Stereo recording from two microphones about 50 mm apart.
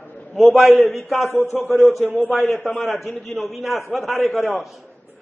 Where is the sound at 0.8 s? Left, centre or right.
Centre.